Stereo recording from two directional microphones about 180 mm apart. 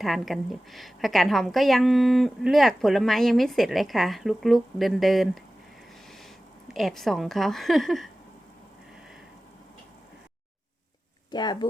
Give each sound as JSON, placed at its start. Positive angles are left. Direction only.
{"t": 0.0, "sound": "a woman's voice", "side_deg": 0}
{"t": 6.7, "sound": "a woman's voice", "side_deg": 0}
{"t": 11.3, "sound": "speech", "side_deg": 25}